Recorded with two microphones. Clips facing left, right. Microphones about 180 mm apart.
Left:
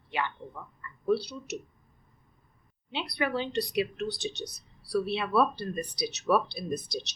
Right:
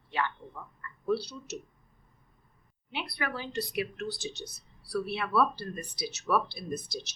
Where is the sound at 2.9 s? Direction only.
20° left (ahead or behind).